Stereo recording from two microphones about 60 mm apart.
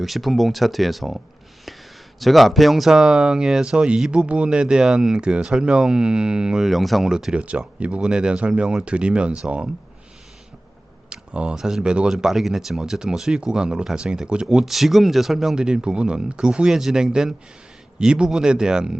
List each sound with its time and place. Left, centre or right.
0.0 s speech: centre
6.7 s speech: centre
7.1 s speech: centre
11.1 s speech: centre
14.4 s speech: centre